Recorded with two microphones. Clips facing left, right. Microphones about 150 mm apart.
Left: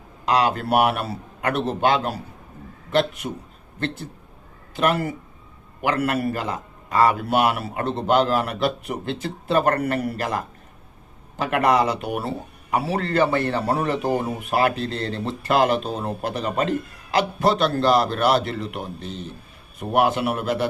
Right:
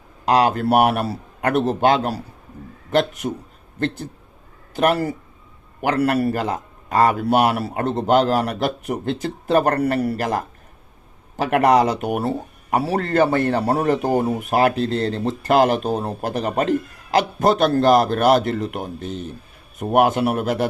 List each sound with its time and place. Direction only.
0.3 s a man's voice: 45° right (ahead or behind)
3.8 s a man's voice: 45° right (ahead or behind)
11.3 s a man's voice: 45° right (ahead or behind)